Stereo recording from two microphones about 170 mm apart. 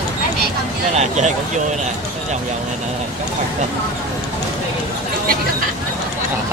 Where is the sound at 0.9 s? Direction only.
40° right (ahead or behind).